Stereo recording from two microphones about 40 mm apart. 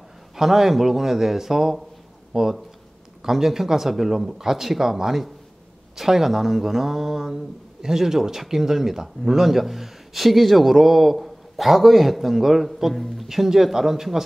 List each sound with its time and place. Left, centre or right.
0.4 s speech: centre
13.3 s speech: centre